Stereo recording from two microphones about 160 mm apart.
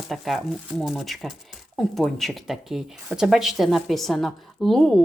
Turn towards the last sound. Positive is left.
turn(degrees=0)  # may be behind; listen again after turning